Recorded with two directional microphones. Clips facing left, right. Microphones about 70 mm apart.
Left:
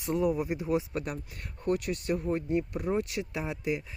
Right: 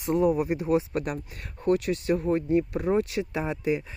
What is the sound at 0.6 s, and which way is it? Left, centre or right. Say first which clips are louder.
Speech: right 5 dB; right.